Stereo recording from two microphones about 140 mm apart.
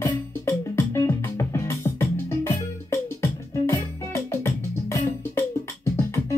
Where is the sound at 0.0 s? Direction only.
20° left (ahead or behind).